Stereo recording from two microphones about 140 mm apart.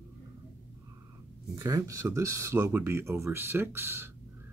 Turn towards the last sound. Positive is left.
turn(degrees=-15)  # may be behind; listen again after turning